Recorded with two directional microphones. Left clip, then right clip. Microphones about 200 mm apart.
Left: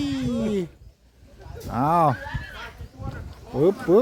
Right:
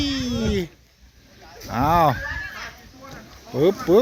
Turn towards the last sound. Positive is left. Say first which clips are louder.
# right 1 dB
turn(degrees=0)  # may be behind; listen again after turning